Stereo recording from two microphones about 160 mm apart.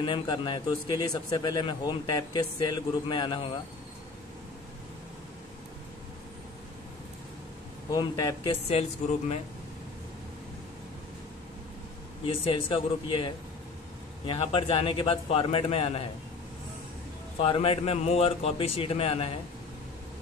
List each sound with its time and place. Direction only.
0.0 s a man's voice: 30° left (ahead or behind)
7.9 s a man's voice: 20° left (ahead or behind)
8.5 s a man's voice: 40° left (ahead or behind)
12.3 s a man's voice: 35° left (ahead or behind)
17.4 s a man's voice: 35° left (ahead or behind)